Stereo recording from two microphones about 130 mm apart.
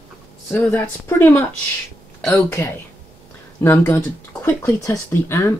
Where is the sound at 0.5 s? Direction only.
15° left (ahead or behind).